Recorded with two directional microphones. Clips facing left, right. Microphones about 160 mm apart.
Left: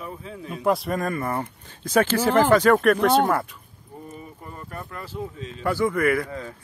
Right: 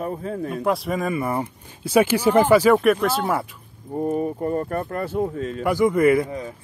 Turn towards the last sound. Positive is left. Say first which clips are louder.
# right 5 dB
turn(degrees=-15)  # may be behind; listen again after turning